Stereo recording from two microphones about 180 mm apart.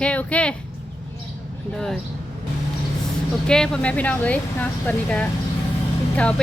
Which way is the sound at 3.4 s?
5° left (ahead or behind).